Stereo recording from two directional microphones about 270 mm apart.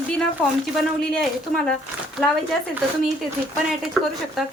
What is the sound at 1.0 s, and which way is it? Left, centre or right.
Speech, centre.